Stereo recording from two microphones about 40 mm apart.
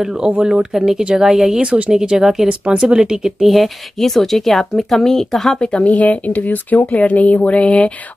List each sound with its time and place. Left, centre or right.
0.4 s speech: centre
1.6 s speech: right
2.0 s speech: centre
2.4 s speech: right
3.4 s speech: centre
5.6 s speech: left
5.9 s speech: left